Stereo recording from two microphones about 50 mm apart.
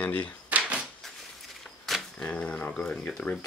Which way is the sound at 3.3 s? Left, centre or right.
Left.